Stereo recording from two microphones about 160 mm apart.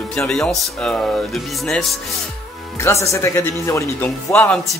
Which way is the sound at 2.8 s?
15° left (ahead or behind).